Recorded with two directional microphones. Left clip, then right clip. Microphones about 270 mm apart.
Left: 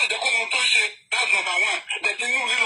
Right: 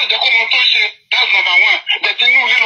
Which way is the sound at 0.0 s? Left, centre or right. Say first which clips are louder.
Right 9 dB; right.